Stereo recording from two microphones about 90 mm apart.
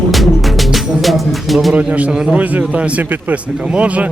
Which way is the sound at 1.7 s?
15° right (ahead or behind).